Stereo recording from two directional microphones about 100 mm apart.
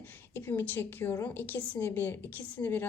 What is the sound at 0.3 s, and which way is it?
A woman's voice, 20° left (ahead or behind).